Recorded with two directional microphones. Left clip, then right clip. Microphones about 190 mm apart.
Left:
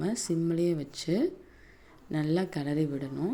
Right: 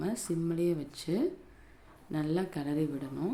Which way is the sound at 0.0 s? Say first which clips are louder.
Left 4 dB; 15° left (ahead or behind).